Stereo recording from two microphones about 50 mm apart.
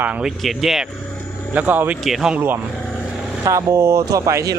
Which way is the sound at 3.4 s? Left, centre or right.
Right.